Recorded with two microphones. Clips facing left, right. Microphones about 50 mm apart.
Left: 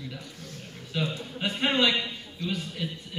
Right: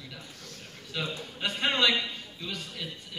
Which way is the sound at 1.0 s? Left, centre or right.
Centre.